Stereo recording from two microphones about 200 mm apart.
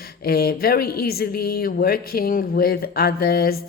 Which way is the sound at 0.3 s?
50° left (ahead or behind).